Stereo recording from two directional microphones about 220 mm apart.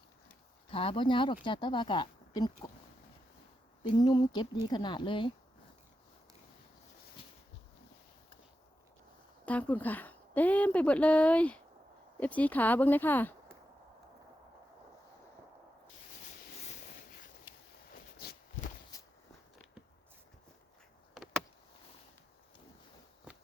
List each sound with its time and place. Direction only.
0.7 s speech: 25° left (ahead or behind)
4.0 s speech: 20° left (ahead or behind)
9.5 s speech: 5° left (ahead or behind)
16.6 s a sound: 35° left (ahead or behind)
18.2 s walk: 45° left (ahead or behind)
18.9 s walk: 15° left (ahead or behind)